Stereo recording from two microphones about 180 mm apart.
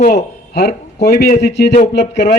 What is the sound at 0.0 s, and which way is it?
A man's voice, 55° left (ahead or behind).